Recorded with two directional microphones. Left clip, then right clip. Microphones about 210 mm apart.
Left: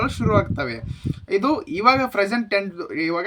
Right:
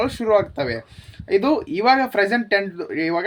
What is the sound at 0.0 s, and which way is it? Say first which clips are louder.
Speech: right 3 dB; 15° left (ahead or behind).